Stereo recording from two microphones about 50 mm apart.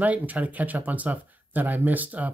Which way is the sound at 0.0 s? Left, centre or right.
Right.